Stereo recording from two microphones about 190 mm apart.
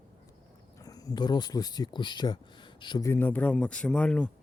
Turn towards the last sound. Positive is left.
turn(degrees=5)  # may be behind; listen again after turning